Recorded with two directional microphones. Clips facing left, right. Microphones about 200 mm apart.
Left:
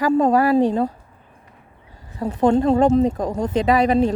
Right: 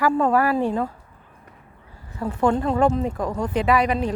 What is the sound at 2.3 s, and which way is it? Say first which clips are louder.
Speech: left 5 dB; 25° left (ahead or behind).